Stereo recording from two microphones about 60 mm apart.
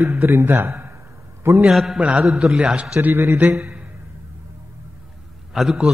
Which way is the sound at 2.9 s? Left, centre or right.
Right.